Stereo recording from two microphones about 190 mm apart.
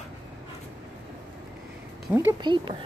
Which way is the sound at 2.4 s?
25° right (ahead or behind).